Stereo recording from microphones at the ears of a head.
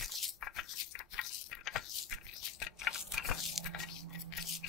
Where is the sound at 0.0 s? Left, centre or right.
Left.